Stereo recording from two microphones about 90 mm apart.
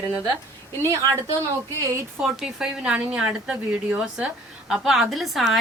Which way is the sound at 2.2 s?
10° right (ahead or behind).